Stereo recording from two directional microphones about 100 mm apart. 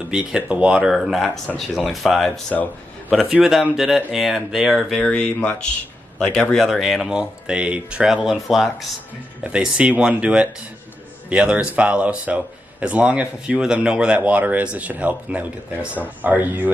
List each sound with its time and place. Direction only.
0.1 s speech: 10° right (ahead or behind)
0.9 s speech: centre (ahead or behind)
5.1 s speech: 10° left (ahead or behind)
9.4 s speech: 10° right (ahead or behind)